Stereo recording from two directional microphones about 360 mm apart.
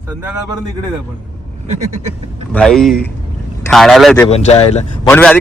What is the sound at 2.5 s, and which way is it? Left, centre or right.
Speech, centre.